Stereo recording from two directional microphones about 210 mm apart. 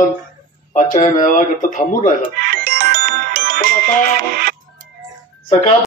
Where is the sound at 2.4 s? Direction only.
45° right (ahead or behind).